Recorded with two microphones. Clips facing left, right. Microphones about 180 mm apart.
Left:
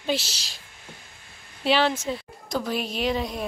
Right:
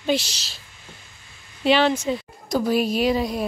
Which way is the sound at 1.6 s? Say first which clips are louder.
Right 4 dB; 5° left (ahead or behind).